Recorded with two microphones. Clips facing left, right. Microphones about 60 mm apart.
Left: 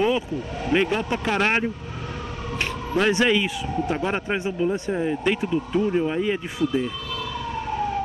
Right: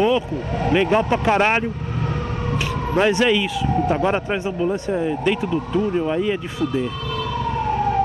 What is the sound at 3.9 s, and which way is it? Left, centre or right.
Speech, centre.